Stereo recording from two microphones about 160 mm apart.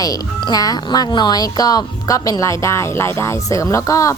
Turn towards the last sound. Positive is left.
turn(degrees=20)  # may be behind; listen again after turning